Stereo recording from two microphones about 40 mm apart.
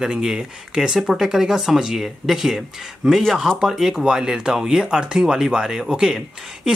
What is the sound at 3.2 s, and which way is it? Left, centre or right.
Speech, centre.